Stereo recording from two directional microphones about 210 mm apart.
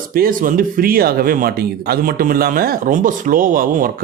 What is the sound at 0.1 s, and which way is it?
Speech, 45° right (ahead or behind).